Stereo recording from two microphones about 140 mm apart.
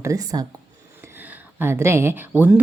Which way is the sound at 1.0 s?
15° right (ahead or behind).